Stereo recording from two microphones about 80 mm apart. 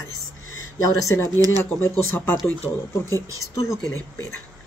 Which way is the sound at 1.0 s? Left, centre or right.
Left.